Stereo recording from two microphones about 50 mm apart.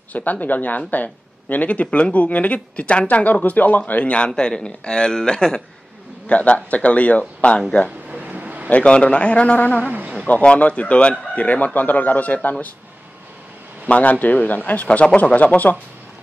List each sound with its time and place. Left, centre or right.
0.1 s speech: left; by 5.6 s centre
6.2 s a man's voice: left
8.2 s a sound: right
8.6 s a man's voice: left
9.8 s a sound: right
10.2 s a man's voice: left
13.8 s speech: left